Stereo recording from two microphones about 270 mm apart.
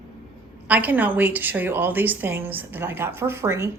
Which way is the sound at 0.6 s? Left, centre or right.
Centre.